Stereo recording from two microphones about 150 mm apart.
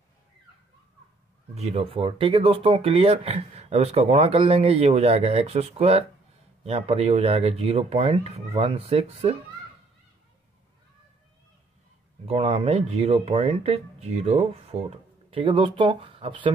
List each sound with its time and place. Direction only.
1.5 s speech: 45° right (ahead or behind)
12.3 s speech: 40° right (ahead or behind)